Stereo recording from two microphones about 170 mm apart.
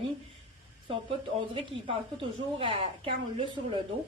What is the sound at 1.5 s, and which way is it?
A woman's voice, 30° right (ahead or behind).